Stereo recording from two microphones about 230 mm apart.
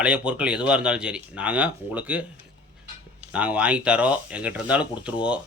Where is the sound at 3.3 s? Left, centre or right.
Centre.